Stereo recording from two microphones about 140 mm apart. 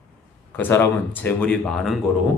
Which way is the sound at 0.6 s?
15° left (ahead or behind).